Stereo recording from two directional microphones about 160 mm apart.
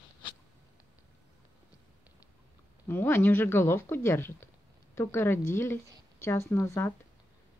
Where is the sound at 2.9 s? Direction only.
10° left (ahead or behind).